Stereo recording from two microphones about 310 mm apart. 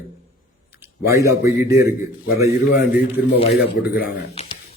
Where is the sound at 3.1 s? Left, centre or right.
Left.